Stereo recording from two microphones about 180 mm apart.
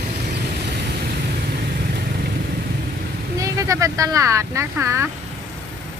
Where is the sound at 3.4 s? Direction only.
20° right (ahead or behind).